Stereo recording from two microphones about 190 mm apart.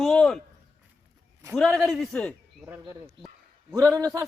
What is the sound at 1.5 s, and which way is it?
Speech, centre (ahead or behind).